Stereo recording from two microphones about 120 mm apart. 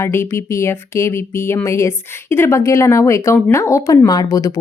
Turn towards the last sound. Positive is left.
turn(degrees=30)  # may be behind; listen again after turning